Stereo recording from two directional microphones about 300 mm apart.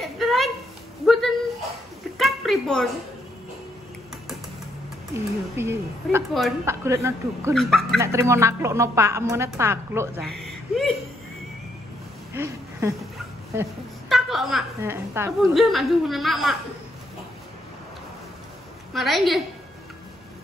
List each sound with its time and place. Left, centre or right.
0.0 s a sound: centre
5.1 s a woman's voice: centre
7.5 s a woman's voice: centre
8.0 s a woman's voice: centre
12.4 s a sound: centre
13.6 s a woman's voice: centre
18.9 s a woman's voice: centre